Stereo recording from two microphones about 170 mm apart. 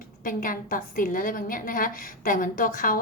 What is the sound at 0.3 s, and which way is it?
A woman's voice, 55° left (ahead or behind).